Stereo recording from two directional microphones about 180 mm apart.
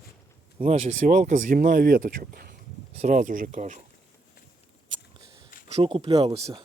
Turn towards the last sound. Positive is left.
turn(degrees=-30)  # may be behind; listen again after turning